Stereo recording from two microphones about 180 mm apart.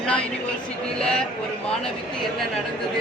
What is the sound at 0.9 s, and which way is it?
Speech, 5° left (ahead or behind).